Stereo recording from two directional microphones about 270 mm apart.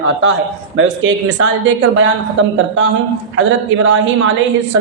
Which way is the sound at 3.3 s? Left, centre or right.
Right.